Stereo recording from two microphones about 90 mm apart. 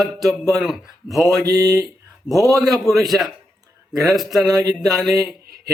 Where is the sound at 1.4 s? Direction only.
45° right (ahead or behind).